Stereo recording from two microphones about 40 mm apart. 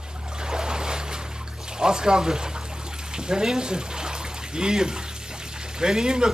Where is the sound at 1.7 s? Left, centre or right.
Centre.